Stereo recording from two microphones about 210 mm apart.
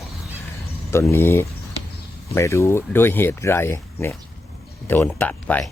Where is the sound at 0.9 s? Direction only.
10° left (ahead or behind).